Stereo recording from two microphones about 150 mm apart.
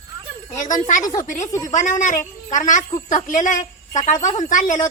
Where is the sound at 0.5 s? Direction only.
55° left (ahead or behind).